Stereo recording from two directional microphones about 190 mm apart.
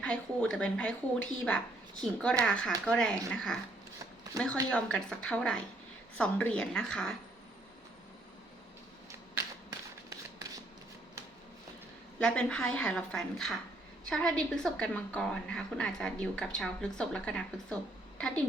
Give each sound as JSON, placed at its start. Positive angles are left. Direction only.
{"t": 0.0, "sound": "a woman's voice", "side_deg": 5}
{"t": 4.7, "sound": "a woman's voice", "side_deg": 5}
{"t": 9.3, "sound": "a sound", "side_deg": -15}
{"t": 12.2, "sound": "a woman's voice", "side_deg": 5}